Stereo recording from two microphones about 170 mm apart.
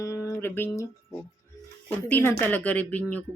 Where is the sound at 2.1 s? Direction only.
10° left (ahead or behind).